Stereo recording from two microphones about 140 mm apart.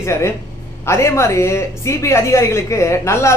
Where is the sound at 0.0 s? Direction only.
20° left (ahead or behind).